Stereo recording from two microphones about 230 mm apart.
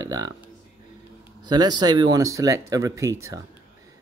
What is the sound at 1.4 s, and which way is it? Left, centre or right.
Speech, centre.